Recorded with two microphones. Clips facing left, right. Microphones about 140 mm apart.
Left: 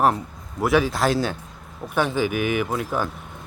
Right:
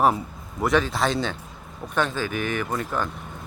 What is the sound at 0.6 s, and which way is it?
Speech, 5° left (ahead or behind).